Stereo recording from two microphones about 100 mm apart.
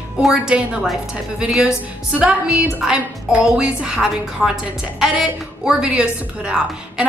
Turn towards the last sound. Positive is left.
turn(degrees=-10)  # may be behind; listen again after turning